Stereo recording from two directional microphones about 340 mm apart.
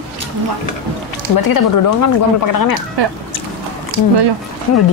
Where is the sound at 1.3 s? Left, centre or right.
Left.